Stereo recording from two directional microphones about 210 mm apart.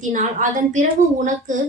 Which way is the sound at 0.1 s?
35° right (ahead or behind).